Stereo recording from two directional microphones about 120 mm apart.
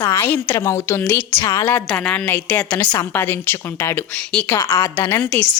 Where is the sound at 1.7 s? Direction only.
10° left (ahead or behind).